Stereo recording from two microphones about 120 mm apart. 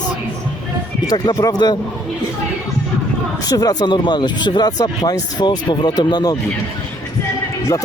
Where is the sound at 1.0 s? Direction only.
35° left (ahead or behind).